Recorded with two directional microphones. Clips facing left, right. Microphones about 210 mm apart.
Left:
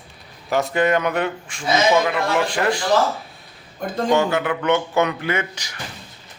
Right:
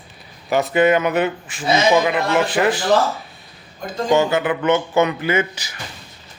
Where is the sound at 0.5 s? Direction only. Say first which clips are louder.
Right 3 dB; centre (ahead or behind).